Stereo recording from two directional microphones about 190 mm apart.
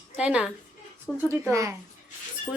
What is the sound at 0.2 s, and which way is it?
Speech, 5° right (ahead or behind).